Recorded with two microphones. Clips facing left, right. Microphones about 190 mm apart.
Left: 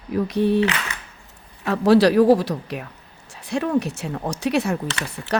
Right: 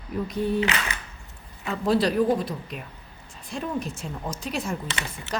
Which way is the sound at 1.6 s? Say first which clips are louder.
Left 8 dB; 75° left (ahead or behind).